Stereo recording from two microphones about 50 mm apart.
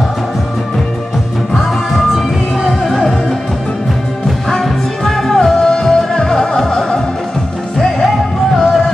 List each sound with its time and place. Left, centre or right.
1.5 s music: centre
4.5 s music: centre
8.5 s music: centre